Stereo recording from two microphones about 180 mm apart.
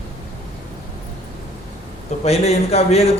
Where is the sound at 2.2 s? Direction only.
35° left (ahead or behind).